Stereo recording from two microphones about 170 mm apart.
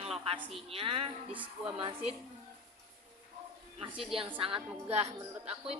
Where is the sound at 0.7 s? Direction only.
35° right (ahead or behind).